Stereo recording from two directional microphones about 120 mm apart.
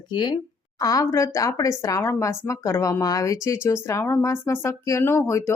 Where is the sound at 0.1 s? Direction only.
40° left (ahead or behind).